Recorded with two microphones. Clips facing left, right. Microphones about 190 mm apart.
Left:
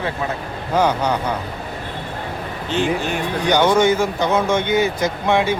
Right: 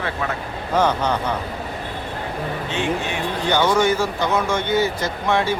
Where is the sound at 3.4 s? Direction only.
20° left (ahead or behind).